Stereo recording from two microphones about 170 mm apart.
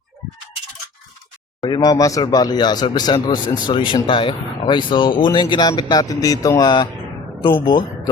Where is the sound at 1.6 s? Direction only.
25° left (ahead or behind).